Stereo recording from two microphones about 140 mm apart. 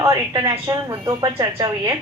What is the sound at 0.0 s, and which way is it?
A woman's voice, 25° right (ahead or behind).